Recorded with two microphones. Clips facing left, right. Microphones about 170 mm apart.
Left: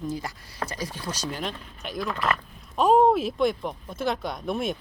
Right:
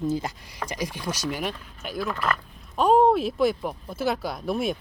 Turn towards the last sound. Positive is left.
turn(degrees=0)  # may be behind; listen again after turning